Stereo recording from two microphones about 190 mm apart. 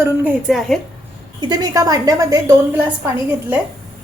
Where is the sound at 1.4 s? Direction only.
20° right (ahead or behind).